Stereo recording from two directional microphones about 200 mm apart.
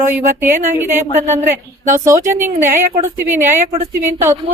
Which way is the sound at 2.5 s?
40° right (ahead or behind).